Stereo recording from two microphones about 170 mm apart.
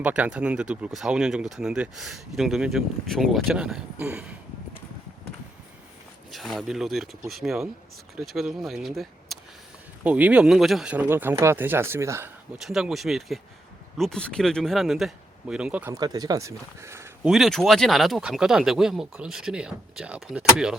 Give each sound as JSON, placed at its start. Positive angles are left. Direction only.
{"t": 0.0, "sound": "speech", "side_deg": -5}
{"t": 6.3, "sound": "speech", "side_deg": 0}
{"t": 12.5, "sound": "speech", "side_deg": 0}
{"t": 16.0, "sound": "speech", "side_deg": -20}
{"t": 17.2, "sound": "speech", "side_deg": 0}